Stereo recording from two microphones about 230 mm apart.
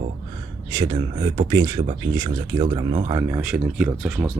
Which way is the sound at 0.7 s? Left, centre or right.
Centre.